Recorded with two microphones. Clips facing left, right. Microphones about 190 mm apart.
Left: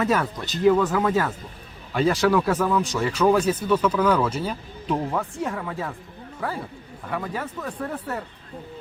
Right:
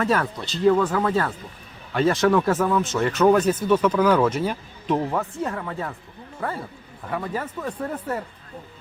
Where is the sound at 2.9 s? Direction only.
10° left (ahead or behind).